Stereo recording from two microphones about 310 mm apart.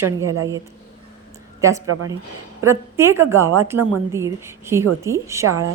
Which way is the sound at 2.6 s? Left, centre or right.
Centre.